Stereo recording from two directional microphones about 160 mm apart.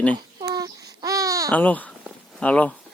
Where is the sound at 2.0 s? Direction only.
5° left (ahead or behind).